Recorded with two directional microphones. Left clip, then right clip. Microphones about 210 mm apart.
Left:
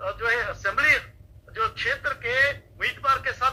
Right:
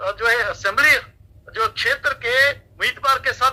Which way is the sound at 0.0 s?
35° right (ahead or behind).